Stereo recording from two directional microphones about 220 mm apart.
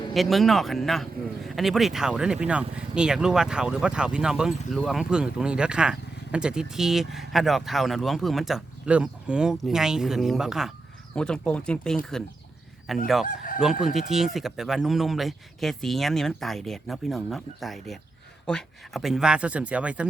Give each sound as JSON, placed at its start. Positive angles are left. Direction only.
{"t": 0.1, "sound": "speech", "side_deg": 0}
{"t": 13.2, "sound": "crowing", "side_deg": 40}
{"t": 13.8, "sound": "speech", "side_deg": 0}